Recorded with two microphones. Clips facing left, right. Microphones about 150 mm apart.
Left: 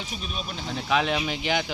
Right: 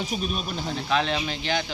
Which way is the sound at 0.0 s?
45° right (ahead or behind).